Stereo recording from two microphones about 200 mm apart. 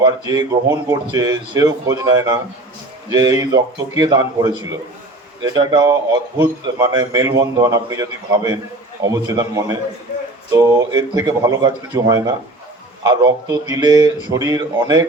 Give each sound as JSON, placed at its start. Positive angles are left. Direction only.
{"t": 0.0, "sound": "speech", "side_deg": -20}
{"t": 5.5, "sound": "speech", "side_deg": -20}